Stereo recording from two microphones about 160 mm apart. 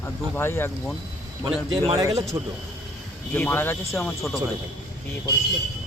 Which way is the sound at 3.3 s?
10° left (ahead or behind).